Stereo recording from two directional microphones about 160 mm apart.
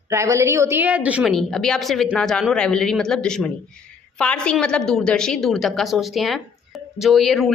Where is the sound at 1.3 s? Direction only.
Centre (ahead or behind).